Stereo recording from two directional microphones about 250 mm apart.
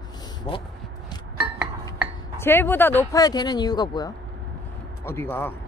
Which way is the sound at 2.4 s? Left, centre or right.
Centre.